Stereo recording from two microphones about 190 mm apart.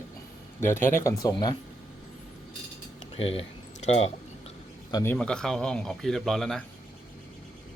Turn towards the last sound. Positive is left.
turn(degrees=0)  # may be behind; listen again after turning